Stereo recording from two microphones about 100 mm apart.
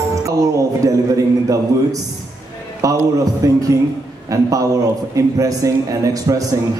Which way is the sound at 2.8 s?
35° right (ahead or behind).